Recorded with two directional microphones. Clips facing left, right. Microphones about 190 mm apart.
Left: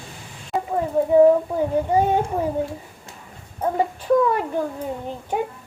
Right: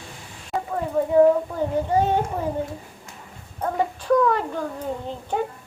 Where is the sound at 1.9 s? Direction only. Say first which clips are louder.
Left 1 dB; 10° left (ahead or behind).